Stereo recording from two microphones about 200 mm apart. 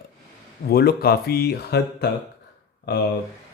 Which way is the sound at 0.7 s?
50° left (ahead or behind).